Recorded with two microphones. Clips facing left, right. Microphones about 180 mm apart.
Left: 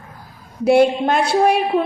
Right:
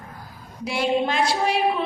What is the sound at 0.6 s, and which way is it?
A woman's voice, 55° left (ahead or behind).